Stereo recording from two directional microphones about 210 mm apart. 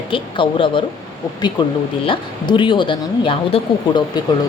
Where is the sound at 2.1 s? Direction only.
25° left (ahead or behind).